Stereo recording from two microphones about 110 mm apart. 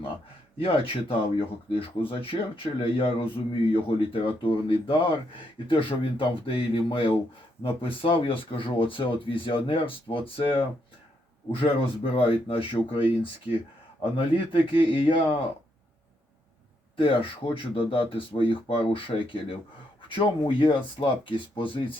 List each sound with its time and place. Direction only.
0.6 s speech: 55° left (ahead or behind)
11.6 s speech: 55° left (ahead or behind)
17.0 s speech: 50° left (ahead or behind)